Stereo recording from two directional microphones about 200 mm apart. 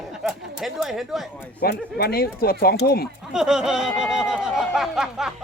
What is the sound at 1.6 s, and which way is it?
Speech, 50° left (ahead or behind).